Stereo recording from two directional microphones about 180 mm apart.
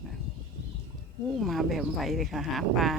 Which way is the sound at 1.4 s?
Centre (ahead or behind).